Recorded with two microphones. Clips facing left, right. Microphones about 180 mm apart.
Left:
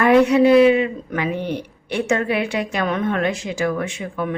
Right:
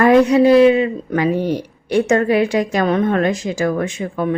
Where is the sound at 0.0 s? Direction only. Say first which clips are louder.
Right 2 dB; 40° right (ahead or behind).